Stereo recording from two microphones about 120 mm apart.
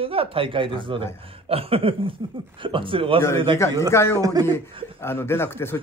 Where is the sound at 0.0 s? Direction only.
50° right (ahead or behind).